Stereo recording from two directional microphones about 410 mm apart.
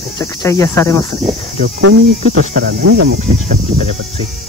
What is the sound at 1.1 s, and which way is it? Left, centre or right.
Speech, right.